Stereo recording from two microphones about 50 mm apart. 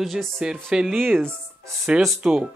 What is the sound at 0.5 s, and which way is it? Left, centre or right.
Speech, centre.